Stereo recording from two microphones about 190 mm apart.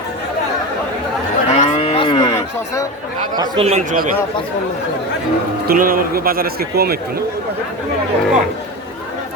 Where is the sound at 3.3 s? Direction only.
30° right (ahead or behind).